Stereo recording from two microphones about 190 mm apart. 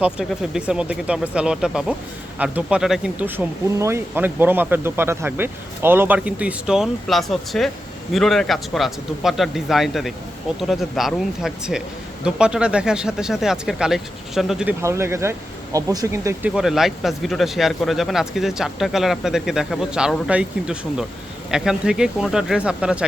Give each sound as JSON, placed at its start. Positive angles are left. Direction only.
{"t": 0.0, "sound": "speech", "side_deg": -5}
{"t": 16.6, "sound": "speech", "side_deg": 0}